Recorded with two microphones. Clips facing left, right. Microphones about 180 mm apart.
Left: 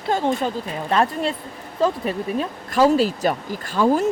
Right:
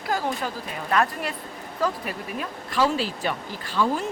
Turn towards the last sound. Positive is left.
turn(degrees=45)  # may be behind; listen again after turning